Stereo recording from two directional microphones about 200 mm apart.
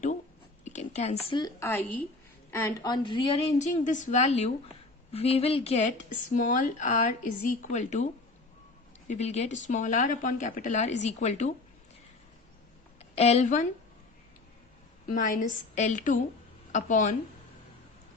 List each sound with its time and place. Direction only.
0.6 s a woman's voice: 35° left (ahead or behind)
9.0 s speech: 35° left (ahead or behind)
13.0 s a woman's voice: 30° left (ahead or behind)
15.1 s speech: 40° left (ahead or behind)